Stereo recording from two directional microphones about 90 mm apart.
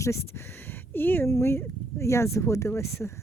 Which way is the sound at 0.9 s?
20° left (ahead or behind).